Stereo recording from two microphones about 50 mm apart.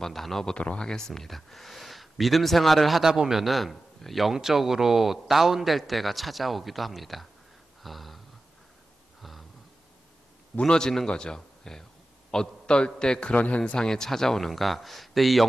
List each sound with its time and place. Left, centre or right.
0.0 s a man's voice: centre
0.6 s a man's voice: left; by 3.0 s centre
3.0 s a man's voice: centre
7.8 s gasp: centre
9.2 s gasp: centre
10.6 s a man's voice: centre